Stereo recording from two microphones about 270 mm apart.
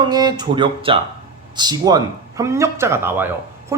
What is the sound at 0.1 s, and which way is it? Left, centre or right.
Speech, centre.